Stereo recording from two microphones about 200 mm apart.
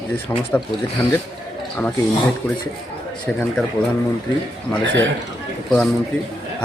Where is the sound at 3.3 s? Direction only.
Centre (ahead or behind).